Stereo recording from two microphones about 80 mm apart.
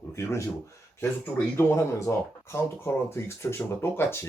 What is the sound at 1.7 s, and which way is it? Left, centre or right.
Speech, left.